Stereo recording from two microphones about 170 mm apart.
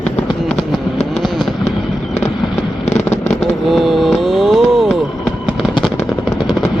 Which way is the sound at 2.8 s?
40° left (ahead or behind).